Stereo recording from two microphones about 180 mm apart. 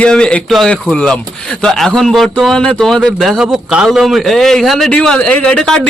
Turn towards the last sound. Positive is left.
turn(degrees=5)  # may be behind; listen again after turning